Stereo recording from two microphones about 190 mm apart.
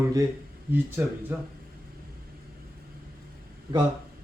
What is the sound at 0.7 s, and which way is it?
Speech, 10° right (ahead or behind).